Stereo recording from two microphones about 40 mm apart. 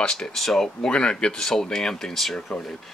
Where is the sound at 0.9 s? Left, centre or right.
Left; by 2.5 s centre.